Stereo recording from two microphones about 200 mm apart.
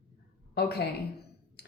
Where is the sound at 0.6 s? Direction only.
55° left (ahead or behind).